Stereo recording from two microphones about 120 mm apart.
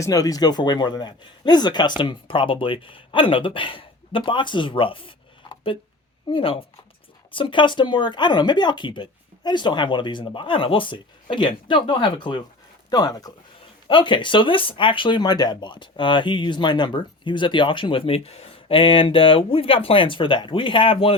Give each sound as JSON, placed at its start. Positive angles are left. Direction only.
{"t": 0.0, "sound": "speech", "side_deg": 30}